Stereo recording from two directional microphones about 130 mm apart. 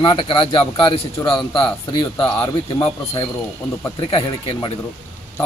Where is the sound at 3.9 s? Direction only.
40° left (ahead or behind).